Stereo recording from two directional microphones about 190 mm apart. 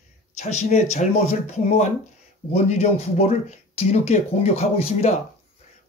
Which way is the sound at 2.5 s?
35° left (ahead or behind).